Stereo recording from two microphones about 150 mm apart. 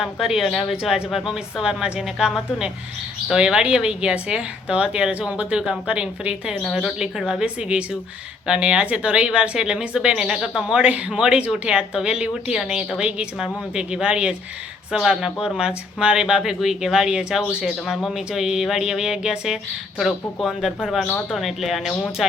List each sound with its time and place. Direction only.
0.0 s speech: centre (ahead or behind)